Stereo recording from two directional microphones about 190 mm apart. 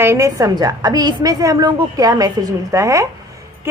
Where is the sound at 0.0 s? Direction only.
15° right (ahead or behind).